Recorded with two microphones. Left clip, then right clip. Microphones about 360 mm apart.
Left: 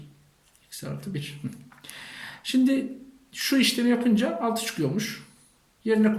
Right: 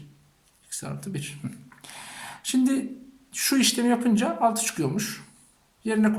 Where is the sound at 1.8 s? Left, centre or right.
Centre.